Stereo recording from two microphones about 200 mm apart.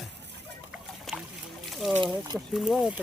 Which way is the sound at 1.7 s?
Centre (ahead or behind).